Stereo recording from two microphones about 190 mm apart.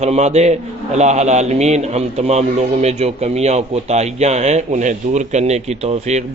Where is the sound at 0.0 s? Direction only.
35° right (ahead or behind).